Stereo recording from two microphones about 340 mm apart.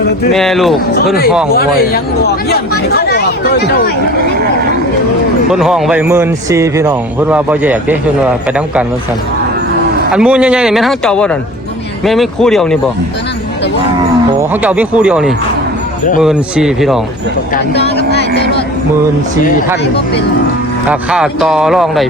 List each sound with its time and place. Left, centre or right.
0.3 s a man's voice: centre
1.5 s speech: left
5.5 s a man's voice: centre
10.1 s a man's voice: centre
14.5 s a man's voice: centre
17.5 s speech: left
20.9 s a man's voice: centre